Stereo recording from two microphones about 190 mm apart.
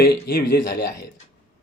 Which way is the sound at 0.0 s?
50° left (ahead or behind).